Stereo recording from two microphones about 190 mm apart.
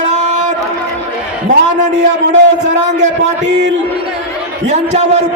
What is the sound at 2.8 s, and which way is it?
Speech, 40° right (ahead or behind).